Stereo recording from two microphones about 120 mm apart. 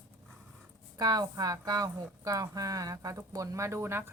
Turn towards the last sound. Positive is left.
turn(degrees=-20)  # may be behind; listen again after turning